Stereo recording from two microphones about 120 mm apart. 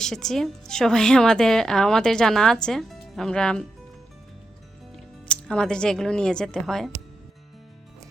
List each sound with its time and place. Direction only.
0.0 s a woman's voice: 5° left (ahead or behind)
5.3 s speech: 5° left (ahead or behind)